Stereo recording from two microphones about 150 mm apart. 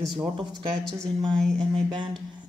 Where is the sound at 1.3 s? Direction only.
5° left (ahead or behind).